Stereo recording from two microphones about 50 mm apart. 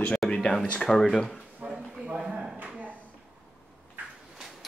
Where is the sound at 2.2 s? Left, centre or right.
Centre.